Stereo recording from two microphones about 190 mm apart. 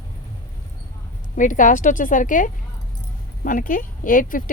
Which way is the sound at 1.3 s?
45° left (ahead or behind).